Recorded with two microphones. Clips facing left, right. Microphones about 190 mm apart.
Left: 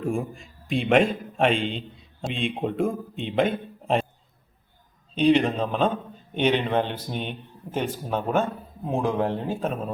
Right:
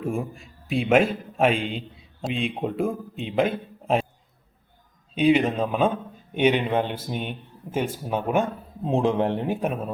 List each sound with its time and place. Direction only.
0.0 s a man's voice: centre (ahead or behind)
5.1 s speech: 10° right (ahead or behind)
8.8 s speech: 25° right (ahead or behind)